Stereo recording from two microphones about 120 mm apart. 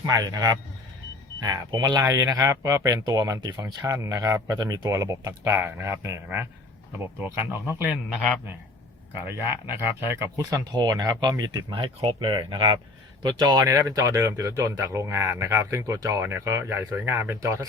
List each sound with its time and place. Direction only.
0.1 s speech: 30° right (ahead or behind); by 7.9 s 15° right (ahead or behind)
9.2 s speech: 15° right (ahead or behind); by 11.6 s 35° right (ahead or behind)
11.9 s speech: 45° right (ahead or behind); by 17.7 s 25° right (ahead or behind)